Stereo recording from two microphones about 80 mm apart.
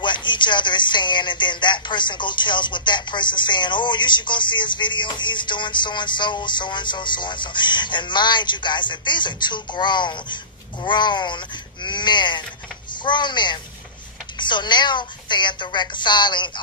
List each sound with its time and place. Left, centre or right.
0.0 s speech: left